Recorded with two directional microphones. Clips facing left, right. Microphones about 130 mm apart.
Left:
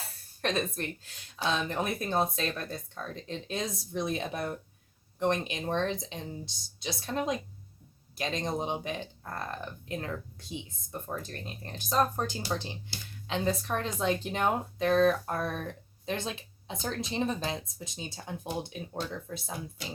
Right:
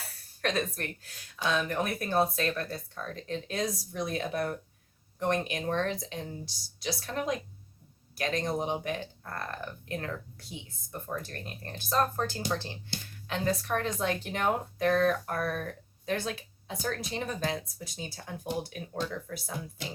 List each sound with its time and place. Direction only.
0.8 s speech: 20° left (ahead or behind)